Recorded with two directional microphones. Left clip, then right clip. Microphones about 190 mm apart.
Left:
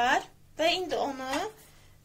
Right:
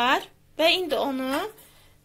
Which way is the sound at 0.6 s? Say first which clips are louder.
Right 5 dB; 35° right (ahead or behind).